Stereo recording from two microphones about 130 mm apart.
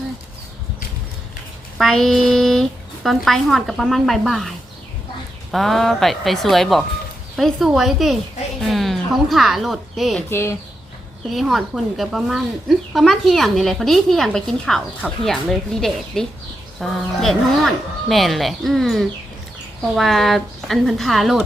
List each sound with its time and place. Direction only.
1.8 s speech: centre (ahead or behind)
10.2 s speech: 20° left (ahead or behind)
11.3 s speech: centre (ahead or behind)